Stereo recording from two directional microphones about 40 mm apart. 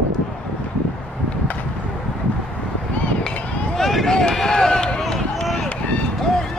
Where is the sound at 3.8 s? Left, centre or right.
Centre.